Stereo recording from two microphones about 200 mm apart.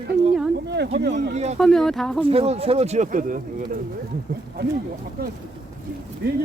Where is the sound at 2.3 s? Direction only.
30° right (ahead or behind).